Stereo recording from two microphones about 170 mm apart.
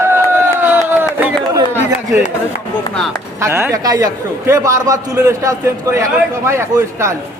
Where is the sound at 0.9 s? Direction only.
10° right (ahead or behind).